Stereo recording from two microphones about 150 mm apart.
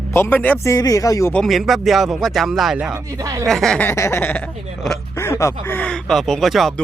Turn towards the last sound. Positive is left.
turn(degrees=0)  # may be behind; listen again after turning